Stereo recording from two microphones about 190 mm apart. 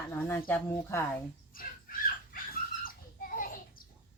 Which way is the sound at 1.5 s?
50° left (ahead or behind).